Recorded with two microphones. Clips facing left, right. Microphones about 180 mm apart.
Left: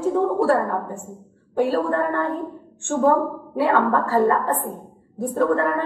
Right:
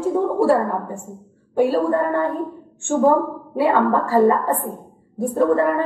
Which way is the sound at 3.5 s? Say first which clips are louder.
Right 2 dB; 15° right (ahead or behind).